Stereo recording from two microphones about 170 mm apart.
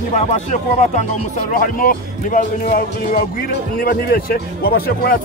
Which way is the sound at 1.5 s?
55° left (ahead or behind).